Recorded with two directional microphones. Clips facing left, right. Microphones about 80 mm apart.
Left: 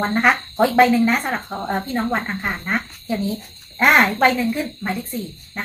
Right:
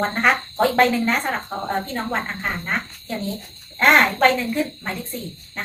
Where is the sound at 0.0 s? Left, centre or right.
Centre.